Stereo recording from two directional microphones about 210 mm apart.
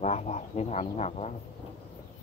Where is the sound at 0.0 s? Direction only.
30° left (ahead or behind).